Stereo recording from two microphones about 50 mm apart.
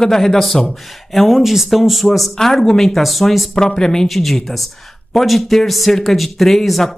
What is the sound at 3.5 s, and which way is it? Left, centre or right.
Speech, centre.